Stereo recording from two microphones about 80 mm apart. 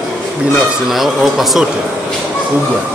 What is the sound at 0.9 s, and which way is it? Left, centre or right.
Speech, centre.